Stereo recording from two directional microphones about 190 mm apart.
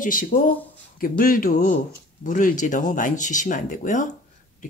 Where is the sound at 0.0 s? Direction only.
45° left (ahead or behind).